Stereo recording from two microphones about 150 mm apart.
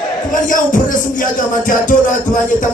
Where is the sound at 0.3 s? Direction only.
60° left (ahead or behind).